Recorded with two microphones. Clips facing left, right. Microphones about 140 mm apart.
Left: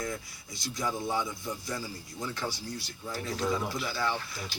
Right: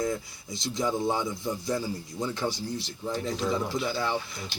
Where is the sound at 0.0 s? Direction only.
25° right (ahead or behind).